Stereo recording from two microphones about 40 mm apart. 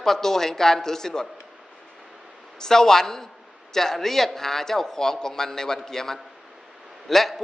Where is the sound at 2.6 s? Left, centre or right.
Centre.